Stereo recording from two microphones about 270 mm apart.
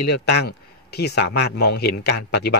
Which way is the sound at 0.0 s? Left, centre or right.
Left.